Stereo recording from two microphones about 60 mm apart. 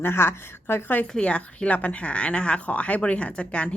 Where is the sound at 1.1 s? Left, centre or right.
Centre.